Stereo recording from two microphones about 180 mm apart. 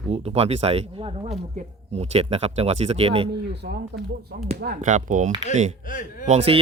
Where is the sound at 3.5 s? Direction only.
65° right (ahead or behind).